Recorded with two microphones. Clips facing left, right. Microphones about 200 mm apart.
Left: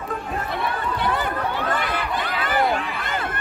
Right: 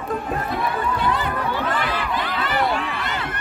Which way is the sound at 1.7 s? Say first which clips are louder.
Right 1 dB; 50° left (ahead or behind).